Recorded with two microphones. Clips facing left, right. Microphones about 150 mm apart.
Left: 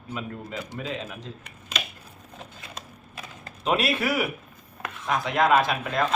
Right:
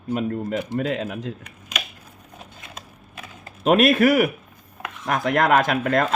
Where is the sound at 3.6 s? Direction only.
50° right (ahead or behind).